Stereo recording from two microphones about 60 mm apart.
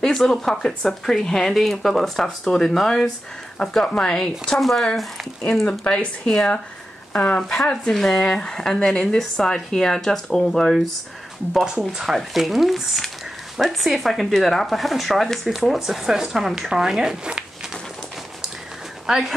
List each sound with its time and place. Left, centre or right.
0.0 s speech: centre
4.2 s speech: centre
5.7 s speech: centre
7.1 s speech: left; by 10.8 s centre
12.2 s speech: centre
19.0 s speech: centre